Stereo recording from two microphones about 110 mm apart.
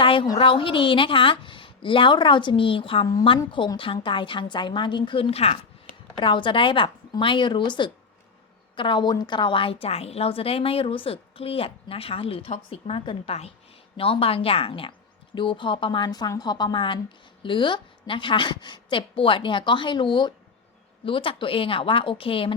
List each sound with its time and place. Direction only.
0.0 s a sound: 50° left (ahead or behind)
0.3 s a woman's voice: 50° left (ahead or behind)
6.1 s a woman's voice: 50° left (ahead or behind)
9.8 s a woman's voice: 65° left (ahead or behind)